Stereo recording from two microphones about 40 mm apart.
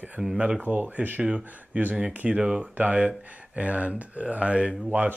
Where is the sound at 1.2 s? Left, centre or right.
Right.